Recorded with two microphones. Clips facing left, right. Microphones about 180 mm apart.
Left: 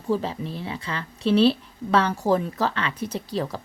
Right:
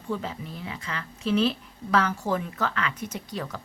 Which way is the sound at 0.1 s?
30° left (ahead or behind).